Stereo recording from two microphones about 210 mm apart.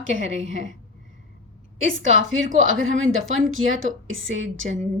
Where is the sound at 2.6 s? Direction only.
75° right (ahead or behind).